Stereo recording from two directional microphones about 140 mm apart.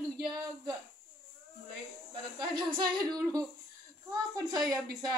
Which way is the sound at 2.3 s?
30° right (ahead or behind).